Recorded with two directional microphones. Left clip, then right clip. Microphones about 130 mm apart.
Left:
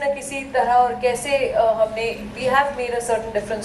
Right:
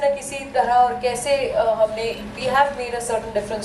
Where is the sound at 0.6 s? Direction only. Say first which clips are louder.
Even; 15° left (ahead or behind).